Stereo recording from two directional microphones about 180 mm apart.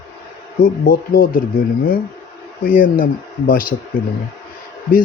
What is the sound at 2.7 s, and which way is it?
Speech, 50° left (ahead or behind).